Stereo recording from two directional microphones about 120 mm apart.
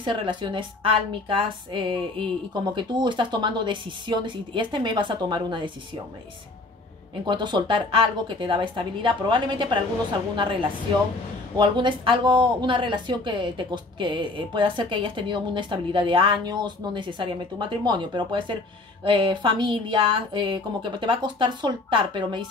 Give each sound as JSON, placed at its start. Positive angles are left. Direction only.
{"t": 0.0, "sound": "a woman's voice", "side_deg": -40}
{"t": 7.2, "sound": "speech", "side_deg": -40}